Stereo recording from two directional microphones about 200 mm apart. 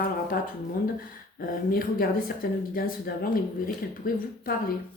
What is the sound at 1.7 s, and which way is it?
Speech, 45° left (ahead or behind).